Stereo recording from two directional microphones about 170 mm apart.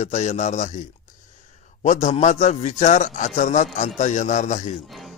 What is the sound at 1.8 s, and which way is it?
Speech, 45° left (ahead or behind).